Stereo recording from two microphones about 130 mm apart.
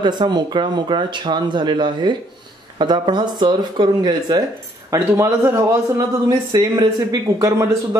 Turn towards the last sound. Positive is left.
turn(degrees=-25)  # may be behind; listen again after turning